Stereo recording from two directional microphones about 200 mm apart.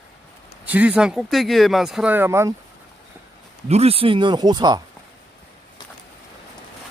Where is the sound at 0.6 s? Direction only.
5° right (ahead or behind).